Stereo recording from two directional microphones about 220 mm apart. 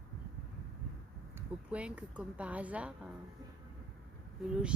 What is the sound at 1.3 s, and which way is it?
Speech, 5° right (ahead or behind).